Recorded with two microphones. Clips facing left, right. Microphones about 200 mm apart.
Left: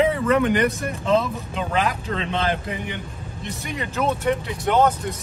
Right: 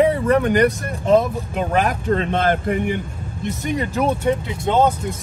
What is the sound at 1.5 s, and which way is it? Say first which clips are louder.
Speech: right 4 dB; 50° right (ahead or behind).